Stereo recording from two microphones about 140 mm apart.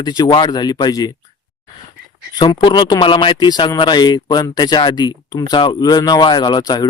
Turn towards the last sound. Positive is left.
turn(degrees=30)  # may be behind; listen again after turning